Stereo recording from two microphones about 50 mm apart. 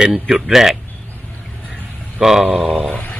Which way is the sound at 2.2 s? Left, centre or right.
Centre.